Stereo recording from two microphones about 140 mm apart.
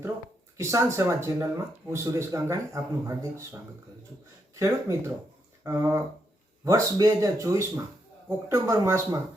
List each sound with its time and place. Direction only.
0.5 s speech: 20° right (ahead or behind)
4.6 s speech: 20° right (ahead or behind)